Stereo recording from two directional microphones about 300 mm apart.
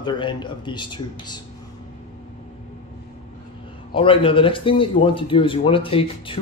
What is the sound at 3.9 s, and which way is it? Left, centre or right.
Speech, centre.